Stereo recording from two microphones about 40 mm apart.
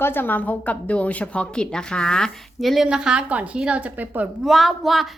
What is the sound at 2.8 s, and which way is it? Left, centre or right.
Speech, right.